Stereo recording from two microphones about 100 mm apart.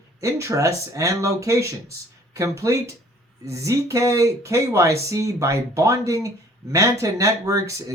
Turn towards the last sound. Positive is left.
turn(degrees=-35)  # may be behind; listen again after turning